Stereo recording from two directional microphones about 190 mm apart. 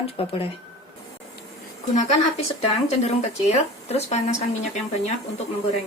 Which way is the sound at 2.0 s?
35° left (ahead or behind).